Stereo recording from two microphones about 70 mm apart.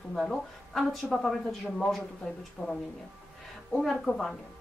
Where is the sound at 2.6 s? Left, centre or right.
Left.